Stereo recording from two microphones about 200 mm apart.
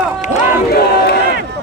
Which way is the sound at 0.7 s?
55° left (ahead or behind).